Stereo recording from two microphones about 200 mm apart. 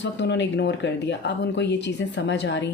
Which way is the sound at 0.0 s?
60° left (ahead or behind).